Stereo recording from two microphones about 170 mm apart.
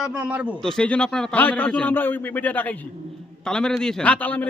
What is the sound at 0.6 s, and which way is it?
A man's voice, 5° left (ahead or behind).